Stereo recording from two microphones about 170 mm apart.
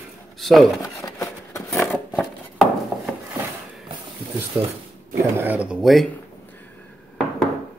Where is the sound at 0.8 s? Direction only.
20° left (ahead or behind).